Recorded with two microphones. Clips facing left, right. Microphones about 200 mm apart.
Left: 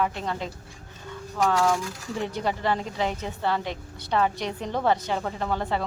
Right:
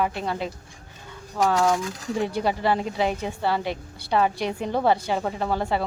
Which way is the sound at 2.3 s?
10° right (ahead or behind).